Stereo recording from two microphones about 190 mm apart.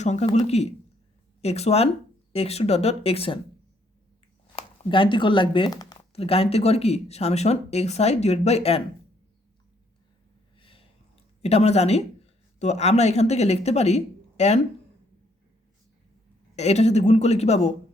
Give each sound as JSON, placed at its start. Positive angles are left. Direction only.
{"t": 0.0, "sound": "speech", "side_deg": 35}
{"t": 4.5, "sound": "speech", "side_deg": 30}
{"t": 10.6, "sound": "a sound", "side_deg": 30}
{"t": 11.4, "sound": "speech", "side_deg": 35}
{"t": 16.6, "sound": "speech", "side_deg": 35}